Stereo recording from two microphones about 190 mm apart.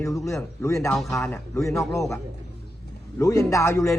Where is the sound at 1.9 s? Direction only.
15° left (ahead or behind).